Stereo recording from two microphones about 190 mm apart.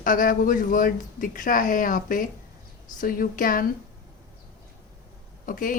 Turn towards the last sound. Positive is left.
turn(degrees=45)  # may be behind; listen again after turning